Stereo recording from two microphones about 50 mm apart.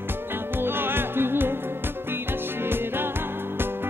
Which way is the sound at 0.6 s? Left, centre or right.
Right.